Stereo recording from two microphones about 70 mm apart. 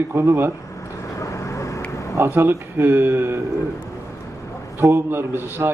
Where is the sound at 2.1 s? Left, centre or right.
Right.